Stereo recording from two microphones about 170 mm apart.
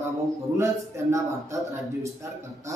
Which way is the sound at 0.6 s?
20° right (ahead or behind).